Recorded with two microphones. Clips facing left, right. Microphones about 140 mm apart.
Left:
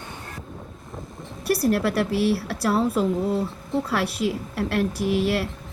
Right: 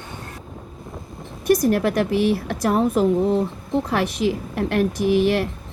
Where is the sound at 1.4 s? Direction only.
30° left (ahead or behind).